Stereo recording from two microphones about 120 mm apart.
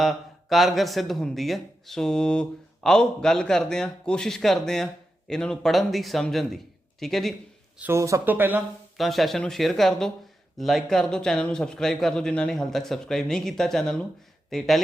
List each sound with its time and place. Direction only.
0.0 s speech: centre (ahead or behind)
7.8 s speech: 20° right (ahead or behind)
9.0 s speech: centre (ahead or behind)